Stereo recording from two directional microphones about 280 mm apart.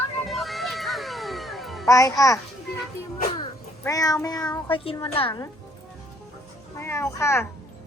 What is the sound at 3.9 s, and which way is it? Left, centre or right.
Speech, centre.